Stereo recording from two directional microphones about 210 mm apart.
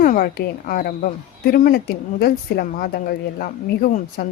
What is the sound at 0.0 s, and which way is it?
A woman's voice, 45° left (ahead or behind).